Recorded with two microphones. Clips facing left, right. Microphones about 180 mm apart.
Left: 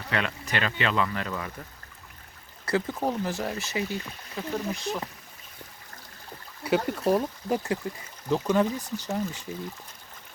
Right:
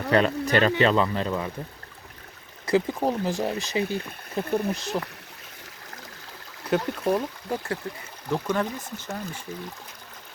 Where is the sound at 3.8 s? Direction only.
55° right (ahead or behind).